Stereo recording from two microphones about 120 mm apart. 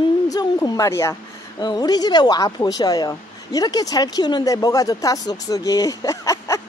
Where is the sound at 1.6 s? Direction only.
35° left (ahead or behind).